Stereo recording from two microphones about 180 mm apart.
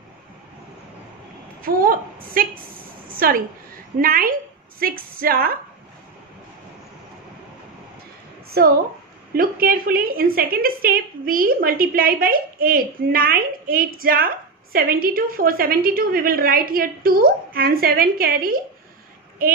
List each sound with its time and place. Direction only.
1.6 s a woman's voice: 55° right (ahead or behind)
9.3 s a woman's voice: 55° right (ahead or behind)